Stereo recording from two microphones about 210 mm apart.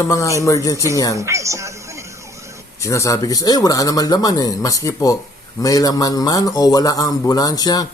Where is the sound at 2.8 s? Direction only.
15° left (ahead or behind).